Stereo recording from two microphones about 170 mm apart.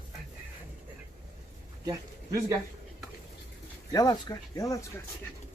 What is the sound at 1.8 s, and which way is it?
Speech, 20° right (ahead or behind).